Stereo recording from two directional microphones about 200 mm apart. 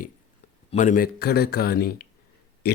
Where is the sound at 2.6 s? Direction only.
50° left (ahead or behind).